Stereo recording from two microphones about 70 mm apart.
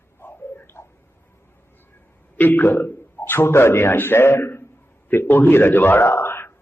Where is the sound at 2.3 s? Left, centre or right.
Left.